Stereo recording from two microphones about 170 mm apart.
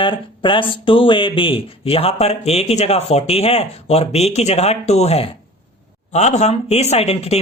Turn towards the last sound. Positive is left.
turn(degrees=35)  # may be behind; listen again after turning